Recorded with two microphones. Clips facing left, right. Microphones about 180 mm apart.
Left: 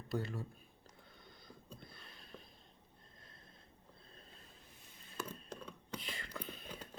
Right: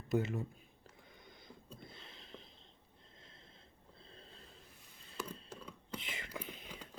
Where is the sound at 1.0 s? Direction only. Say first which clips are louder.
Right 2 dB; 15° right (ahead or behind).